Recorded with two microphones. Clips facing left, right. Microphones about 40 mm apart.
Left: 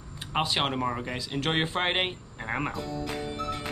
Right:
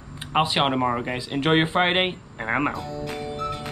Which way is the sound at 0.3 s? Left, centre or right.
Right.